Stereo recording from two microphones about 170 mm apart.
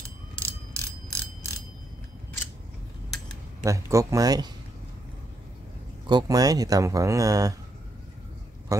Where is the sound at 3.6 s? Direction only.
20° right (ahead or behind).